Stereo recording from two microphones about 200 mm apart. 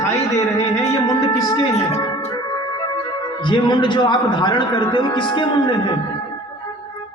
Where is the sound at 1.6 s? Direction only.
35° left (ahead or behind).